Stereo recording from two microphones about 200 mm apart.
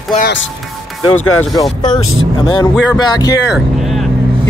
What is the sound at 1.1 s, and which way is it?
Speech, 90° left.